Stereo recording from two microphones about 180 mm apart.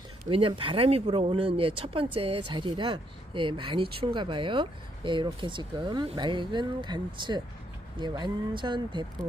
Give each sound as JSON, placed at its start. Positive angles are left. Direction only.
{"t": 0.3, "sound": "speech", "side_deg": -30}